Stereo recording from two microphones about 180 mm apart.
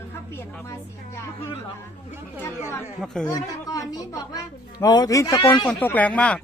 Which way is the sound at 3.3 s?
20° left (ahead or behind).